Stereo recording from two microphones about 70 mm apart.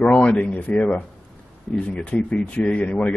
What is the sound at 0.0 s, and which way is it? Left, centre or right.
Speech, centre.